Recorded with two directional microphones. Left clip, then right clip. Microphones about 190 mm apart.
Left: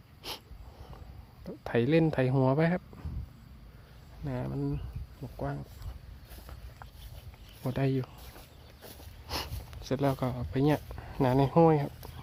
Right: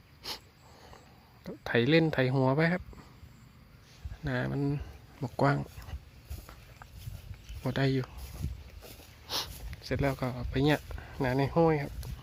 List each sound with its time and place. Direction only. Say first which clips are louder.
1.5 s speech: right 1 dB; centre (ahead or behind)
4.2 s speech: right 3 dB; 5° right (ahead or behind)
5.2 s speech: right 10 dB; 35° right (ahead or behind)
7.6 s speech: right 1 dB; centre (ahead or behind)
9.2 s a sound: right 2 dB; 5° left (ahead or behind)
9.8 s speech: left 2 dB; 5° left (ahead or behind)